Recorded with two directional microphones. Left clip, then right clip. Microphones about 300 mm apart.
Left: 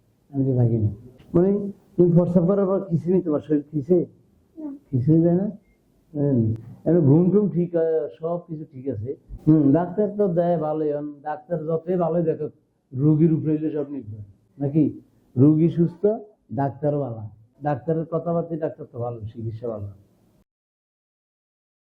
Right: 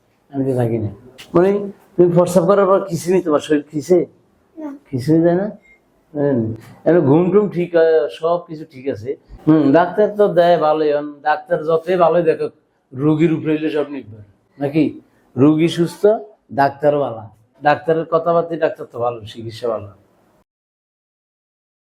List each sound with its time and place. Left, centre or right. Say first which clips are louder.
0.3 s speech: right 6 dB; centre
4.6 s child singing: right 5 dB; centre
5.1 s speech: right 6 dB; centre